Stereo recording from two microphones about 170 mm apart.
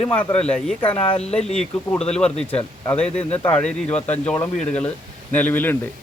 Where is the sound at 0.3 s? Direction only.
5° left (ahead or behind).